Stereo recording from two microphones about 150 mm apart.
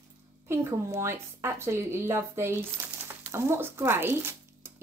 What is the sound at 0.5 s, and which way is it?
Speech, 15° right (ahead or behind).